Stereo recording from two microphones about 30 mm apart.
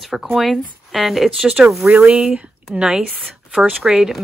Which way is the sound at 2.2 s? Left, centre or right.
Right.